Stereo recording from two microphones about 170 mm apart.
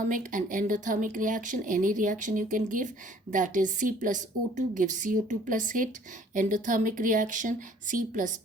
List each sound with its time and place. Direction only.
0.1 s speech: 50° right (ahead or behind)